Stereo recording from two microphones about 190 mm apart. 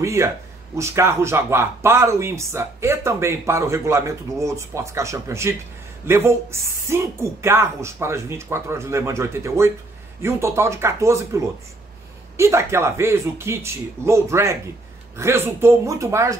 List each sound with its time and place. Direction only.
0.0 s speech: 15° right (ahead or behind)